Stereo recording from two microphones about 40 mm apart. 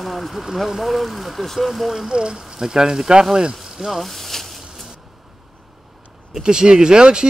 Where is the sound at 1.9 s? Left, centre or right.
Centre.